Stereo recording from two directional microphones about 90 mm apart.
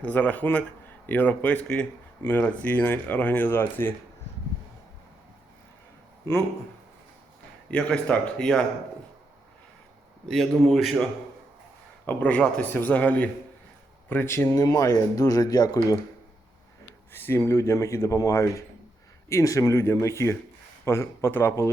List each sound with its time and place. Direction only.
0.0 s speech: 15° left (ahead or behind)
7.7 s speech: 10° left (ahead or behind)
10.2 s a man's voice: 5° left (ahead or behind)
12.0 s speech: 15° left (ahead or behind); by 16.0 s 45° left (ahead or behind)
17.1 s speech: 25° left (ahead or behind)